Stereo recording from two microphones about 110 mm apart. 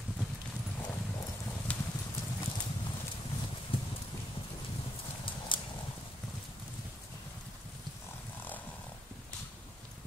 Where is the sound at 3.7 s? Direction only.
55° left (ahead or behind).